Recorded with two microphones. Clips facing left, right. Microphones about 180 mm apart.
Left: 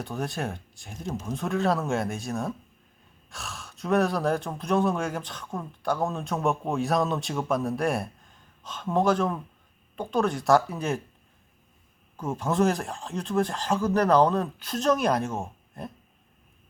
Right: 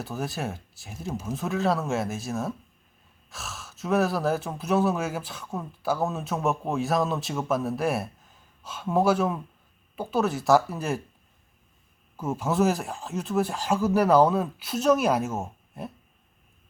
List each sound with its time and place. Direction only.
0.0 s speech: 5° right (ahead or behind)
12.1 s speech: 5° right (ahead or behind)